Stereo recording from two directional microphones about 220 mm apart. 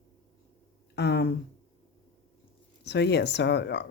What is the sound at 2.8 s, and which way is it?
Speech, 50° left (ahead or behind).